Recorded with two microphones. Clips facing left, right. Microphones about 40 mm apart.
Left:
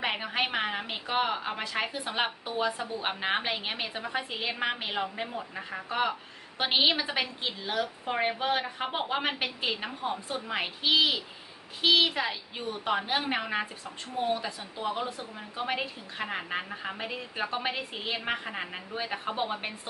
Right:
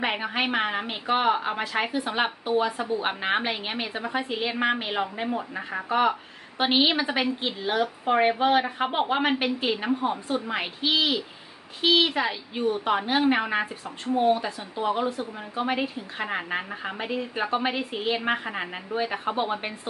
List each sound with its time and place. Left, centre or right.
0.0 s a woman's voice: centre
9.8 s a woman's voice: right
10.5 s a woman's voice: centre